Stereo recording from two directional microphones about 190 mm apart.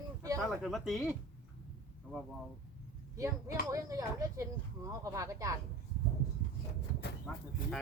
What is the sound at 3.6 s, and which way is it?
Speech, 15° right (ahead or behind).